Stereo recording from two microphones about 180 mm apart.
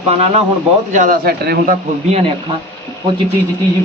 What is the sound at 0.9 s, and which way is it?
Speech, 50° right (ahead or behind).